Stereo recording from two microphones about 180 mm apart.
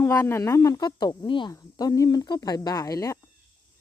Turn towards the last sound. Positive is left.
turn(degrees=20)  # may be behind; listen again after turning